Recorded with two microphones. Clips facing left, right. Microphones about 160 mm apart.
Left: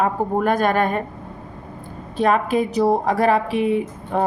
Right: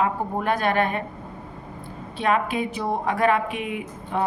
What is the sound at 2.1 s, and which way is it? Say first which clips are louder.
A woman's voice: left 5 dB; 40° left (ahead or behind).